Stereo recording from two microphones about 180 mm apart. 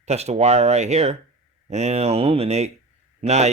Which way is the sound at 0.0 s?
35° right (ahead or behind).